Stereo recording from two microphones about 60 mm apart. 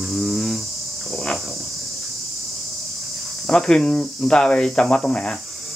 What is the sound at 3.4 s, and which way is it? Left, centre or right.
Speech, centre.